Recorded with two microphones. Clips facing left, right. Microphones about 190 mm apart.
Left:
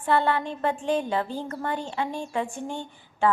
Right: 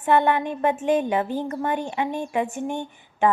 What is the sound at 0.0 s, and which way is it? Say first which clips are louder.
A woman's voice: right 4 dB; 20° right (ahead or behind).